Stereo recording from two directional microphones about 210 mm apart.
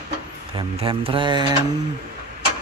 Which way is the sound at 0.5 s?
25° right (ahead or behind).